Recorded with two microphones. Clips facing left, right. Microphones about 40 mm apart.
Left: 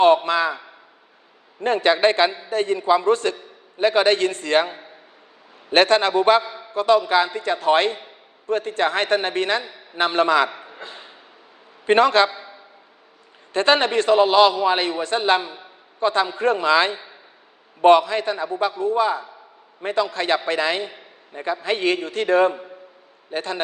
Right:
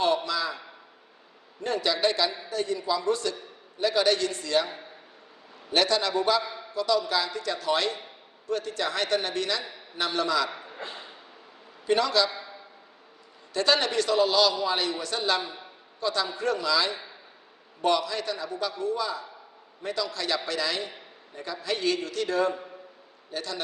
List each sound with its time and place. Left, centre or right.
0.0 s a man's voice: left
1.6 s a man's voice: left
5.7 s a man's voice: left
6.4 s a sound: centre
6.7 s a man's voice: left
10.5 s a sound: centre
11.9 s a man's voice: left
12.3 s a sound: centre
13.5 s a man's voice: left